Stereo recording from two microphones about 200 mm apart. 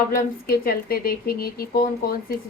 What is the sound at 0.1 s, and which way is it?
A woman's voice, 45° left (ahead or behind).